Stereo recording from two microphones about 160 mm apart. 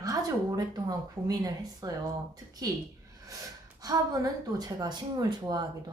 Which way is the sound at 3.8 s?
20° right (ahead or behind).